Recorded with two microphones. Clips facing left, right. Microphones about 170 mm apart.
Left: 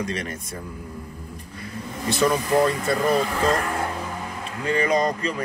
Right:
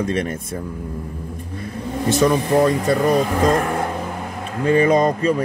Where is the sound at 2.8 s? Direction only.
40° right (ahead or behind).